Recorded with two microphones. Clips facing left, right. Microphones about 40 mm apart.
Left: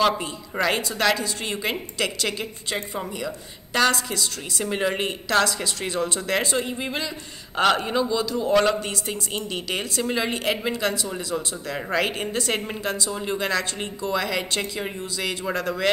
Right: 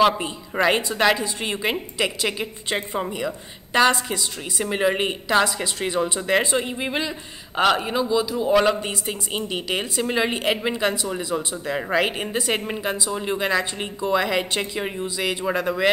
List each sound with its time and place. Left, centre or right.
0.2 s a woman's voice: centre
7.5 s a man's voice: centre